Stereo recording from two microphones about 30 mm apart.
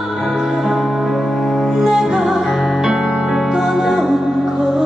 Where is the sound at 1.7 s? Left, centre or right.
Centre.